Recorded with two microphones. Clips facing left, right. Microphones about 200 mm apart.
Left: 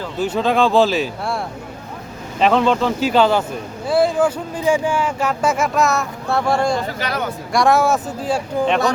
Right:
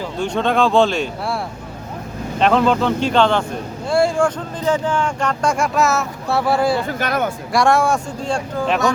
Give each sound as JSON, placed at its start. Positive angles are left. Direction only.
{"t": 0.2, "sound": "speech", "side_deg": 5}
{"t": 2.4, "sound": "speech", "side_deg": 0}
{"t": 6.8, "sound": "speech", "side_deg": -50}
{"t": 7.5, "sound": "speech", "side_deg": 0}